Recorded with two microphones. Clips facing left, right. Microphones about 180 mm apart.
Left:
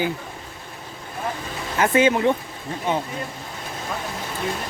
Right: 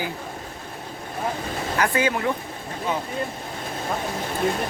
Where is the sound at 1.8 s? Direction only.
25° left (ahead or behind).